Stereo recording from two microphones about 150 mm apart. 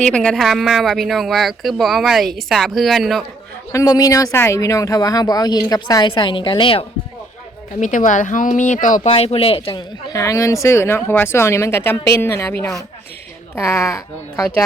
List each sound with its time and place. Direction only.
0.0 s speech: 5° left (ahead or behind)
3.7 s speech: 20° left (ahead or behind)
7.8 s speech: 60° left (ahead or behind)
9.0 s speech: 40° left (ahead or behind); by 14.5 s 20° left (ahead or behind)